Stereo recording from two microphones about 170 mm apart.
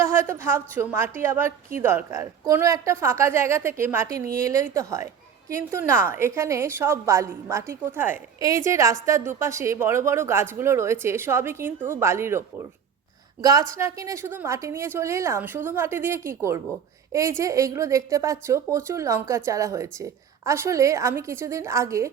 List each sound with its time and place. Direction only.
0.0 s a woman's voice: 15° right (ahead or behind)
13.4 s a woman's voice: 20° right (ahead or behind)